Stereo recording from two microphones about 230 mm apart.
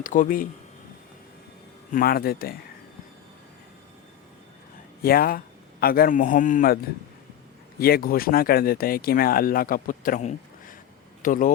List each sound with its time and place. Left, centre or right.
0.0 s speech: left
1.9 s speech: left
5.0 s speech: left
7.8 s speech: left